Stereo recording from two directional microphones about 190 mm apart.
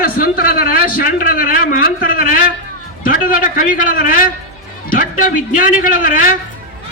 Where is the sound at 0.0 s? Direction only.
50° left (ahead or behind).